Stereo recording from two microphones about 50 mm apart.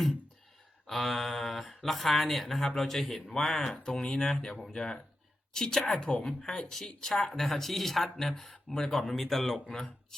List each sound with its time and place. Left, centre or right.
0.9 s speech: centre